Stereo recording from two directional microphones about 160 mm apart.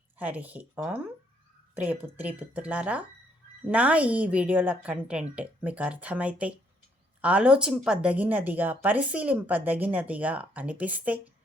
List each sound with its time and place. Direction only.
0.2 s a woman's voice: 10° right (ahead or behind)